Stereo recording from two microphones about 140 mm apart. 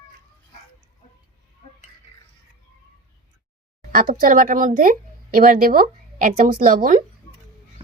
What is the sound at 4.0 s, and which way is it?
Speech, 75° right (ahead or behind).